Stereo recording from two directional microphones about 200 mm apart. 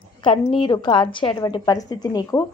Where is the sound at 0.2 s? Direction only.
25° left (ahead or behind).